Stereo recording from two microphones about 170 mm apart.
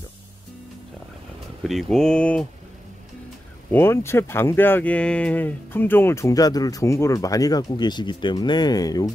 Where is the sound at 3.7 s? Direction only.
15° left (ahead or behind).